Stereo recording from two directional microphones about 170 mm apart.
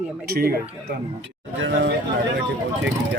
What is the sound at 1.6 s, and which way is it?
Speech, 90° right.